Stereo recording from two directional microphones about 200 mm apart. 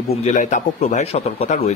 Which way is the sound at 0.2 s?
40° left (ahead or behind).